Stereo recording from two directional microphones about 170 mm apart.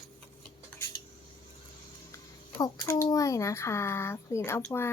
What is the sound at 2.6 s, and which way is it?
Speech, 20° left (ahead or behind).